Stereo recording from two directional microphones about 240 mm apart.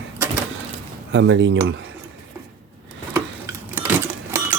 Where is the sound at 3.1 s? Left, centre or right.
Centre.